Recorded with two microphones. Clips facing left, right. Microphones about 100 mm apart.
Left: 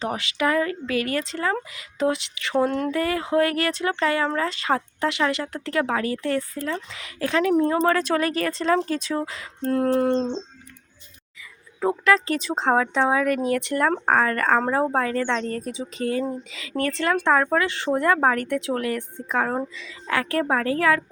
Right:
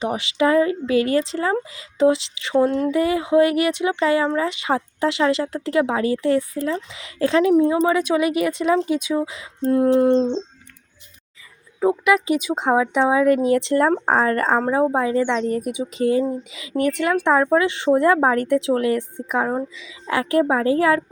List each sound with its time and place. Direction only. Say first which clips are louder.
0.0 s speech: right 4 dB; 20° right (ahead or behind)
2.6 s speech: right 4 dB; centre (ahead or behind)
2.9 s speech: right 5 dB; 20° right (ahead or behind)
7.7 s speech: right 2 dB; 10° right (ahead or behind)
11.8 s speech: right 3 dB; 15° right (ahead or behind)
14.6 s speech: right 3 dB; 5° right (ahead or behind); by 21.0 s 25° right (ahead or behind)